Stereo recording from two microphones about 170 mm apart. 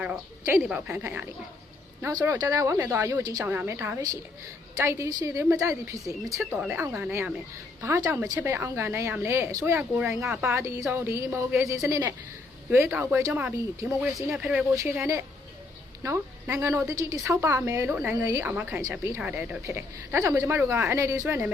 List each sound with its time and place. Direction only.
0.0 s a woman's voice: 10° right (ahead or behind)
10.4 s a woman's voice: 15° right (ahead or behind)